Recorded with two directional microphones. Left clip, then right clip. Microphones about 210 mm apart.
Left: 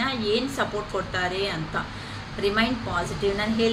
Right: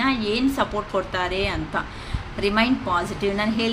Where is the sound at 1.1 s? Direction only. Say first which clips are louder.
Right 2 dB; 50° right (ahead or behind).